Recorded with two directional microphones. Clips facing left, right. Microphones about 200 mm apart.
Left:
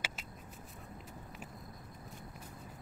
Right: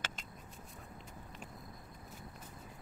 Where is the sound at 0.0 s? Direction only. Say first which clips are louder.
Left 1 dB; 5° left (ahead or behind).